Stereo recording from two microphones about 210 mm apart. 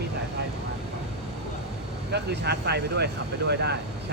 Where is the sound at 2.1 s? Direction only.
50° right (ahead or behind).